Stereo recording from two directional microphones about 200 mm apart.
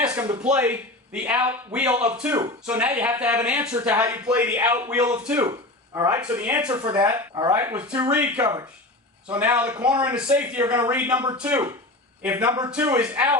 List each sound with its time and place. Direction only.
0.0 s a sound: 5° right (ahead or behind)
0.4 s speech: 5° right (ahead or behind)
6.4 s speech: 5° right (ahead or behind)
6.7 s speech: 25° right (ahead or behind)
7.5 s speech: 10° right (ahead or behind)